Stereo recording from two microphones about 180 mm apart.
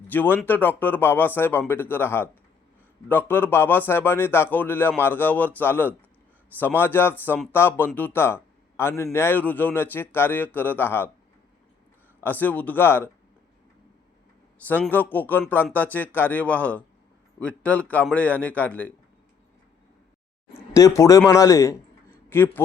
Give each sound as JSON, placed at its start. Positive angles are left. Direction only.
{"t": 0.1, "sound": "a man's voice", "side_deg": 10}
{"t": 12.2, "sound": "a man's voice", "side_deg": 10}
{"t": 14.7, "sound": "a man's voice", "side_deg": 10}
{"t": 20.7, "sound": "a man's voice", "side_deg": 15}